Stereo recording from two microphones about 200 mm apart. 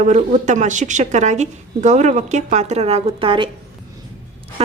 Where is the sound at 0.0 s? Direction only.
35° right (ahead or behind).